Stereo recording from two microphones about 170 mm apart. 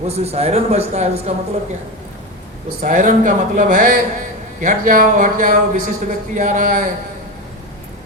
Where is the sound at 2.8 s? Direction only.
50° right (ahead or behind).